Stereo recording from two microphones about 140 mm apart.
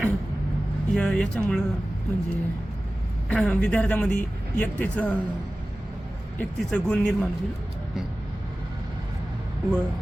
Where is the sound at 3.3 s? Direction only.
10° left (ahead or behind).